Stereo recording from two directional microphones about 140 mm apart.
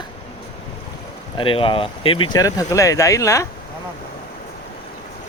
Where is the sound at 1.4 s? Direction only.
40° left (ahead or behind); by 3.5 s 20° left (ahead or behind).